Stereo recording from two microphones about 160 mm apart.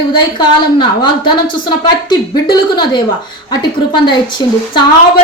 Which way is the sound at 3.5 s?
30° left (ahead or behind).